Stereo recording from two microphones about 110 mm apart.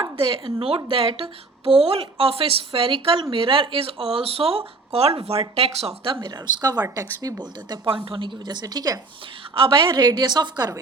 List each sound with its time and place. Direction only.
0.0 s a woman's voice: 50° right (ahead or behind)
6.1 s a woman's voice: 40° right (ahead or behind)
7.9 s a woman's voice: 50° right (ahead or behind); by 9.0 s 35° right (ahead or behind)
9.6 s a woman's voice: 50° right (ahead or behind)